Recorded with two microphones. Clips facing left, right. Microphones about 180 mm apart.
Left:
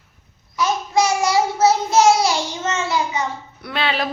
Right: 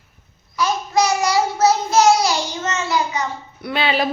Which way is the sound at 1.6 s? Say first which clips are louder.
Even; 25° left (ahead or behind).